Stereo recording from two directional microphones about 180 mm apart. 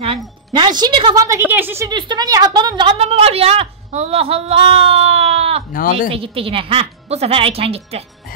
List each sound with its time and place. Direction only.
0.0 s a woman's voice: 30° right (ahead or behind); by 1.9 s 10° right (ahead or behind)
1.9 s a woman's voice: 25° right (ahead or behind)